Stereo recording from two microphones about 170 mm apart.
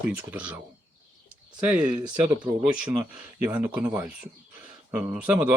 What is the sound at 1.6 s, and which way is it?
Speech, 5° right (ahead or behind).